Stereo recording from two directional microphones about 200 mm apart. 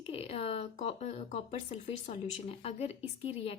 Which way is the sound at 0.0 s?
30° left (ahead or behind).